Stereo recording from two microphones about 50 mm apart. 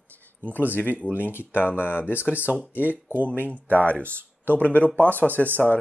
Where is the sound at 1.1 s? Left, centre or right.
Left.